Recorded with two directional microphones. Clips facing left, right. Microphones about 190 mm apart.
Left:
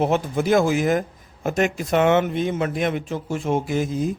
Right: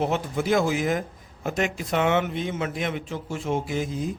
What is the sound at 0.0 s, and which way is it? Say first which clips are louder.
Speech: left 4 dB; 50° left (ahead or behind).